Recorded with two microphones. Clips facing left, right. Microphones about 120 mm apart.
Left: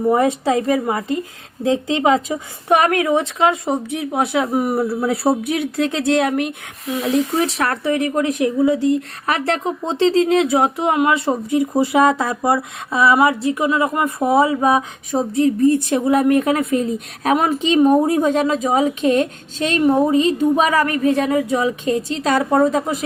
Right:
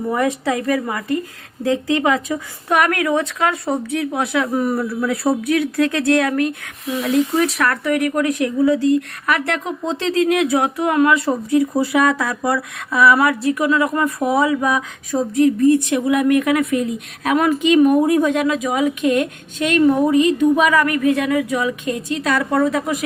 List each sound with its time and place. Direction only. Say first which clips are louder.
0.1 s a woman's voice: left 3 dB; 25° left (ahead or behind)